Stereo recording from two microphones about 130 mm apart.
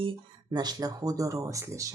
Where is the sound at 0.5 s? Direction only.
30° right (ahead or behind).